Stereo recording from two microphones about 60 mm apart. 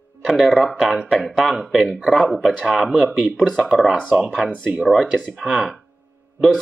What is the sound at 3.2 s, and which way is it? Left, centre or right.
Speech, centre.